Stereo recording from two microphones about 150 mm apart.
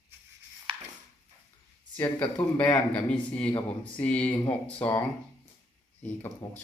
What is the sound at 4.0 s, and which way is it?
Speech, 10° left (ahead or behind).